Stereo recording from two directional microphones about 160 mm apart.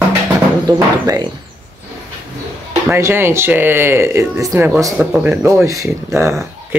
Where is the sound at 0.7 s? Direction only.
25° right (ahead or behind).